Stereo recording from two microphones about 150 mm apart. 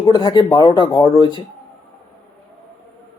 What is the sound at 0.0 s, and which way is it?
Speech, 30° left (ahead or behind).